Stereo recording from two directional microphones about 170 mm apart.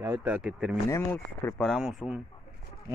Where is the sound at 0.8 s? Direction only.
15° left (ahead or behind).